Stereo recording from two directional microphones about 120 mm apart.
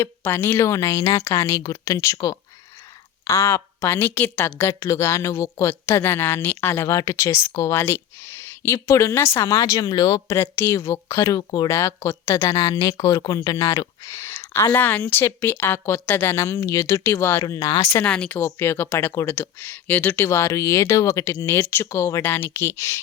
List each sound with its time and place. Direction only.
0.0 s a woman's voice: 20° left (ahead or behind)
17.4 s speech: 30° left (ahead or behind)
17.9 s speech: 10° left (ahead or behind)
18.3 s a woman's voice: 20° left (ahead or behind)